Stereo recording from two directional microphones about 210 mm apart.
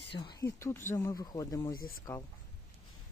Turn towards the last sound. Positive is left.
turn(degrees=15)  # may be behind; listen again after turning